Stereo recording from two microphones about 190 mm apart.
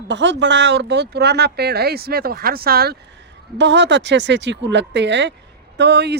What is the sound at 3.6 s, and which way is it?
Speech, 70° right (ahead or behind).